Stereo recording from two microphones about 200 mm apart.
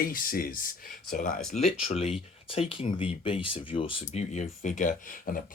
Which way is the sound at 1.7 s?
30° left (ahead or behind).